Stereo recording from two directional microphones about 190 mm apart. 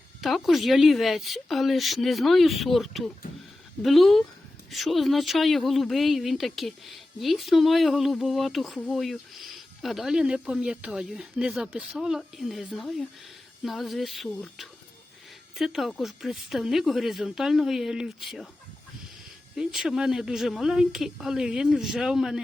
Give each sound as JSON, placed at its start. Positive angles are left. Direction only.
{"t": 0.2, "sound": "speech", "side_deg": 0}
{"t": 19.5, "sound": "speech", "side_deg": -5}